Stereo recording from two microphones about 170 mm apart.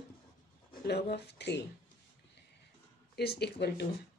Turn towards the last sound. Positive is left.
turn(degrees=75)  # may be behind; listen again after turning